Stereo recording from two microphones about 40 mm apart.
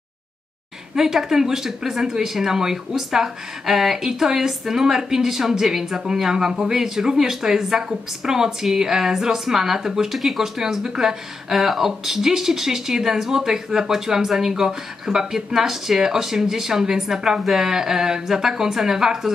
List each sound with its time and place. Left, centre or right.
0.9 s speech: centre